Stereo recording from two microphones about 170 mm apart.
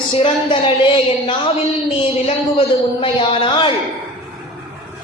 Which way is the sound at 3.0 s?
30° left (ahead or behind).